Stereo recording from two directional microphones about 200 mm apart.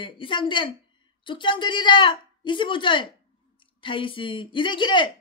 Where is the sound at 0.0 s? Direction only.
25° left (ahead or behind).